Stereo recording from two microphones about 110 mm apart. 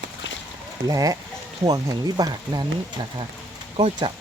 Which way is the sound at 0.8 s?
35° right (ahead or behind).